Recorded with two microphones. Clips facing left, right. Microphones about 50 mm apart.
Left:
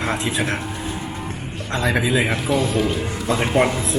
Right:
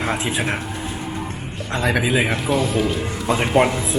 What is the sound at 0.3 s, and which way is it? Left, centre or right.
Speech, centre.